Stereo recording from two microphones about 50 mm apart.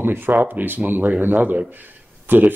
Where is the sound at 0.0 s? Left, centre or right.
Right.